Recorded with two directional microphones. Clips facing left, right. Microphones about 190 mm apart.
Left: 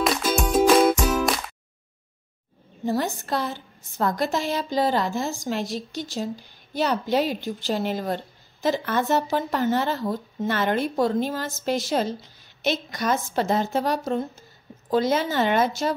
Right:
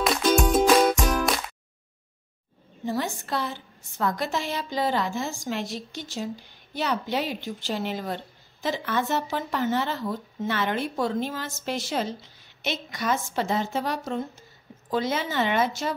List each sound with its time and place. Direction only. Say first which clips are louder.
0.0 s music: right 1 dB; 5° left (ahead or behind)
2.8 s a woman's voice: left 3 dB; 40° left (ahead or behind)